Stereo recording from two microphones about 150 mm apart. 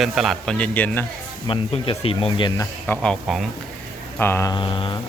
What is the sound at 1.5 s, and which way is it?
Speech, 40° left (ahead or behind).